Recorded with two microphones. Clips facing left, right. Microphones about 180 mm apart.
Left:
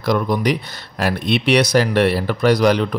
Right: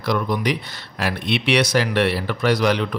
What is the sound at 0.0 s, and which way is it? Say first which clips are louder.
Speech: left 4 dB; 40° left (ahead or behind).